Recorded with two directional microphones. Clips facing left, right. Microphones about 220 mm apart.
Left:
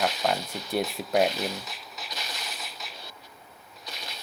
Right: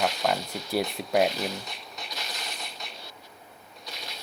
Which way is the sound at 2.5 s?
Centre (ahead or behind).